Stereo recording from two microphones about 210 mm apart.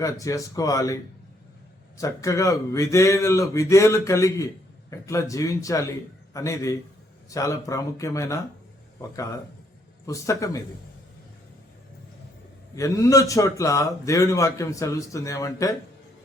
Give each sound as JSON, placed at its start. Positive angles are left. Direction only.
{"t": 0.0, "sound": "a man's voice", "side_deg": 15}
{"t": 2.0, "sound": "a man's voice", "side_deg": 15}
{"t": 12.7, "sound": "a man's voice", "side_deg": 15}